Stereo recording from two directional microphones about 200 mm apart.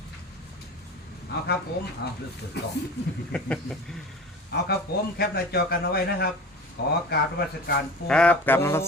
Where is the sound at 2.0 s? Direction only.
55° left (ahead or behind).